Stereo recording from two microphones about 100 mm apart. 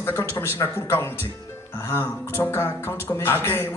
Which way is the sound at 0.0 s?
25° left (ahead or behind).